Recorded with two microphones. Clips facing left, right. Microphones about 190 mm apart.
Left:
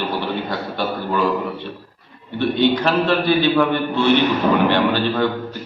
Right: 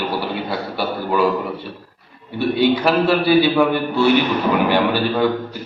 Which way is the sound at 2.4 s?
10° right (ahead or behind).